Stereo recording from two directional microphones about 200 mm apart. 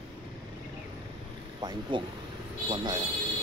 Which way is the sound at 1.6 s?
20° right (ahead or behind).